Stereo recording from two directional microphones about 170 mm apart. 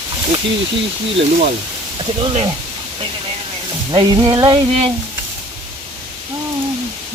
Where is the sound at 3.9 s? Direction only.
30° right (ahead or behind).